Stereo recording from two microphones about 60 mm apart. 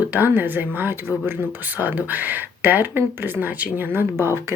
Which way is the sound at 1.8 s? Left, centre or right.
Right.